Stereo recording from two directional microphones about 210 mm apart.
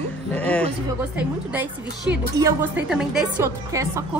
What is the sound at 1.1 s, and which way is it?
A woman's voice, 10° right (ahead or behind).